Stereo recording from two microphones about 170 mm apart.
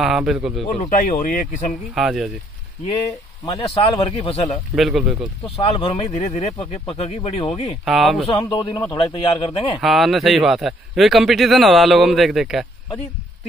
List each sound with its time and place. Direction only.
0.0 s a man's voice: centre (ahead or behind)
0.7 s speech: 50° left (ahead or behind)
2.0 s a man's voice: centre (ahead or behind)
3.5 s speech: 30° left (ahead or behind)
4.7 s a man's voice: centre (ahead or behind)
5.6 s speech: 35° left (ahead or behind)
7.8 s a man's voice: centre (ahead or behind)
8.5 s a man's voice: 25° left (ahead or behind)
9.8 s a man's voice: centre (ahead or behind)